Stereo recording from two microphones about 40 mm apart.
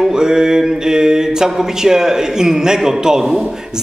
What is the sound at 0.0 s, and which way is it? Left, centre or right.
A man's voice, centre.